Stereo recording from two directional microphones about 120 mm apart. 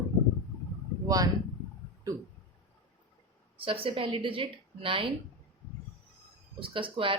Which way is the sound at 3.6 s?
50° right (ahead or behind).